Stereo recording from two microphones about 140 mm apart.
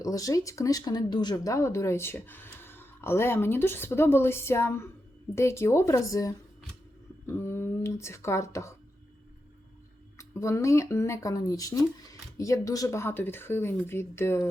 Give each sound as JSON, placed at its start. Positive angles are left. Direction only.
{"t": 0.0, "sound": "speech", "side_deg": 25}
{"t": 10.2, "sound": "speech", "side_deg": 20}